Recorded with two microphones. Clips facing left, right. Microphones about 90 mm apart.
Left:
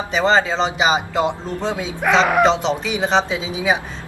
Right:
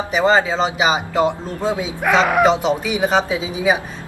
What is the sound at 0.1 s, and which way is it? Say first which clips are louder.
A man's voice: right 1 dB; 10° right (ahead or behind).